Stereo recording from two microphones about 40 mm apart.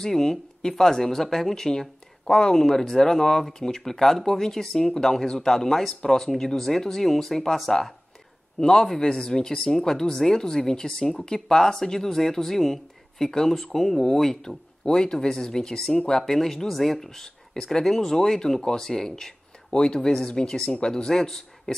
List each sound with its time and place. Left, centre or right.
0.0 s speech: centre
14.9 s speech: centre
21.1 s speech: centre